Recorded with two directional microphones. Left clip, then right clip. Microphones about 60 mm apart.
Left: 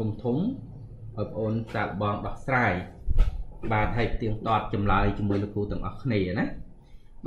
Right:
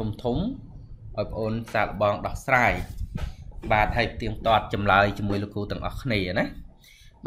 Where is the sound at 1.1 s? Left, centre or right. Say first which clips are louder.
Right 2 dB; right.